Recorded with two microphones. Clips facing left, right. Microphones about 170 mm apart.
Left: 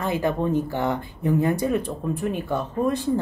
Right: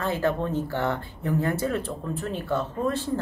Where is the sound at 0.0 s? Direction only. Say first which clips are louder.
Left 2 dB; 15° left (ahead or behind).